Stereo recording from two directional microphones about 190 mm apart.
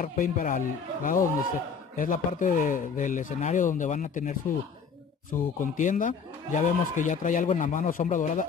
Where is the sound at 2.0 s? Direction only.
45° left (ahead or behind).